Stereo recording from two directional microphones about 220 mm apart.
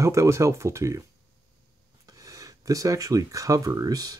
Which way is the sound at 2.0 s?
15° right (ahead or behind).